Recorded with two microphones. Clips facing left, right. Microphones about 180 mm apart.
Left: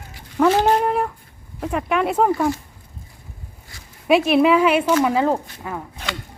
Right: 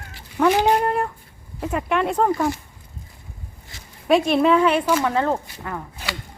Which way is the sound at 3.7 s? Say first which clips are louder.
Right 1 dB; 25° right (ahead or behind).